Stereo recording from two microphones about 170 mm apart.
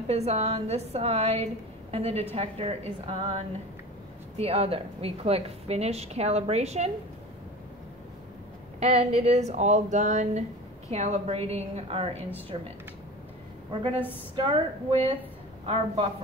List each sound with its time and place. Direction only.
0.1 s a woman's voice: 40° right (ahead or behind)
8.7 s a woman's voice: 40° right (ahead or behind)
14.3 s a woman's voice: 30° right (ahead or behind)